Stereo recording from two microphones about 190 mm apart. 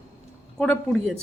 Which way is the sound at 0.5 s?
5° left (ahead or behind).